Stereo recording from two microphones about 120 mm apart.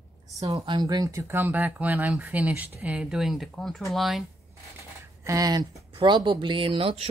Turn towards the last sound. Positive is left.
turn(degrees=-50)  # may be behind; listen again after turning